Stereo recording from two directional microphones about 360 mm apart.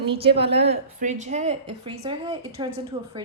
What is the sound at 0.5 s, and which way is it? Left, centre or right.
A woman's voice, right.